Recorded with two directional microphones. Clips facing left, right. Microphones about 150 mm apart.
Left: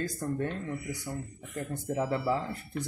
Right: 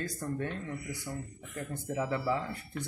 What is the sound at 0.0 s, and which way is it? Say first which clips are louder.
Speech: left 3 dB; 35° left (ahead or behind).